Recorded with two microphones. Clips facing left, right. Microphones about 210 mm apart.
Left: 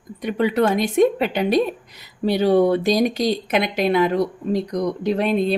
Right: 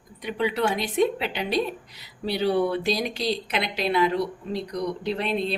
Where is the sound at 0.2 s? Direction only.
50° left (ahead or behind).